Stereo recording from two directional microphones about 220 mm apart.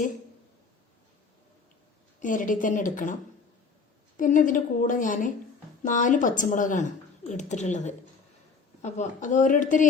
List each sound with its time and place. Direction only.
2.2 s a woman's voice: 35° left (ahead or behind)
4.2 s a woman's voice: 35° left (ahead or behind)